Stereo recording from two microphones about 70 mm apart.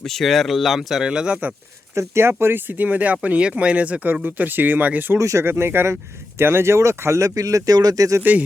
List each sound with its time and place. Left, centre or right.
0.0 s speech: centre
2.0 s speech: right
5.1 s speech: right
8.2 s speech: right